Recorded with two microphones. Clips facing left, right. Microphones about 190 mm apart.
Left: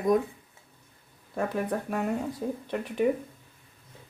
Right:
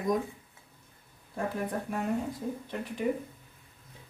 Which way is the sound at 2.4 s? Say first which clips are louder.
Left 4 dB; 70° left (ahead or behind).